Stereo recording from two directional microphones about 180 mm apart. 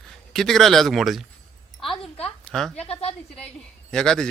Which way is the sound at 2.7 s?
35° left (ahead or behind).